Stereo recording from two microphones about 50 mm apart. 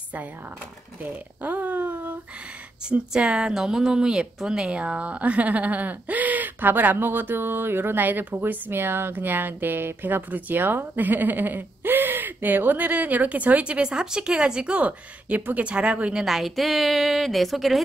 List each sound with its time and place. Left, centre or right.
1.0 s a sound: right
2.9 s speech: centre
16.3 s a woman's voice: centre